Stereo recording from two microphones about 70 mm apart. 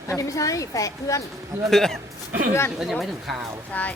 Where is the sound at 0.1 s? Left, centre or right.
Left.